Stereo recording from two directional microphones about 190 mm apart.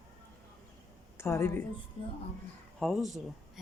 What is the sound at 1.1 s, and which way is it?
Speech, 15° left (ahead or behind).